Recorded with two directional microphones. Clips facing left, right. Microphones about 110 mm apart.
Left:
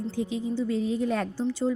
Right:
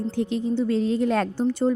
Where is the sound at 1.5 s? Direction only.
55° right (ahead or behind).